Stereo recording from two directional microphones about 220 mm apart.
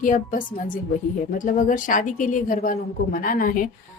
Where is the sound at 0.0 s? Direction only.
35° left (ahead or behind).